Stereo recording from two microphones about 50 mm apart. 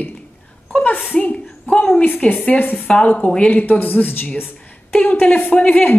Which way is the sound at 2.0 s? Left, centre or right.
Left.